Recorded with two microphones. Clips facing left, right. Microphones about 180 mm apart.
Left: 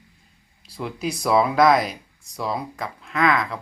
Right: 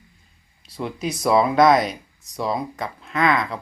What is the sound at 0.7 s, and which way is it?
Speech, centre (ahead or behind).